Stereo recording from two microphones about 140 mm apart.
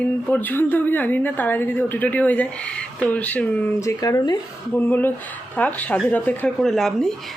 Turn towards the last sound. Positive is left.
turn(degrees=5)  # may be behind; listen again after turning